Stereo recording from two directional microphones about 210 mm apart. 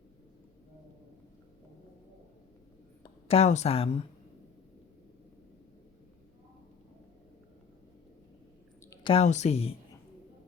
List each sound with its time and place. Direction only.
3.0 s speech: 30° left (ahead or behind)
8.9 s a woman's voice: 25° left (ahead or behind)